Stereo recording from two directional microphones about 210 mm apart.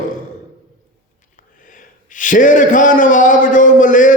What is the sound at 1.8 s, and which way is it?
A man's voice, 40° left (ahead or behind).